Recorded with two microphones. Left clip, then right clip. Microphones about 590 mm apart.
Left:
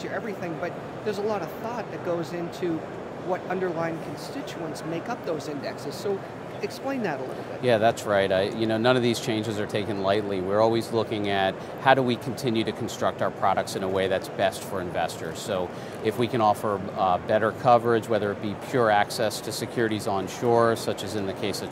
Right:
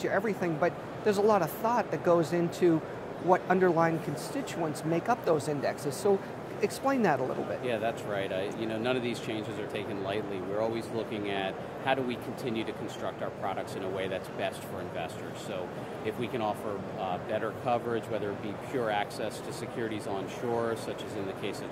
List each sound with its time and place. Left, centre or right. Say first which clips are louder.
0.0 s speech: right 2 dB; right
4.9 s speech: right 4 dB; right
7.6 s speech: left 14 dB; left
16.1 s speech: left 10 dB; left